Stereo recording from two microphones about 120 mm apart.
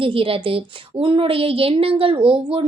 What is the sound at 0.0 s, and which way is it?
A woman's voice, 50° right (ahead or behind).